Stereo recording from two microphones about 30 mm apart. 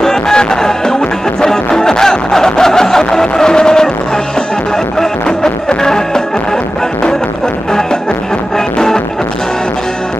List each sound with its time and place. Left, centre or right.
0.0 s music: left
5.8 s music: left
8.5 s music: left